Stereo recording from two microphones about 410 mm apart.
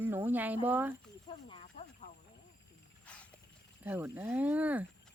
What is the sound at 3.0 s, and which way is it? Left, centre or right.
Wild animals, centre.